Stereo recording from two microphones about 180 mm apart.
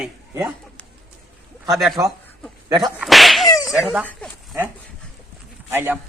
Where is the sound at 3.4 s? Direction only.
20° left (ahead or behind).